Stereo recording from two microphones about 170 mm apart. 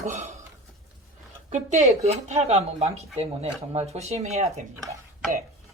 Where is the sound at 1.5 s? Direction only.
45° right (ahead or behind).